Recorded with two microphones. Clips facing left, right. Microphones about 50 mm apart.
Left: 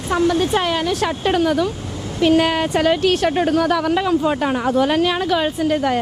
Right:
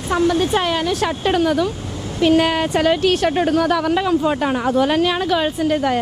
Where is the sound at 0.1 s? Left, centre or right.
Right.